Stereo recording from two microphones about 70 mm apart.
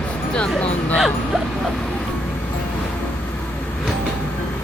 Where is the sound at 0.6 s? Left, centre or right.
Centre.